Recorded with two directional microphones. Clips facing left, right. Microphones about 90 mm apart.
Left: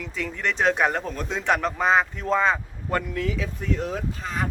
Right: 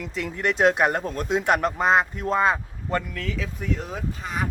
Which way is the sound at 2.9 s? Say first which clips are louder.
Left 2 dB; 15° left (ahead or behind).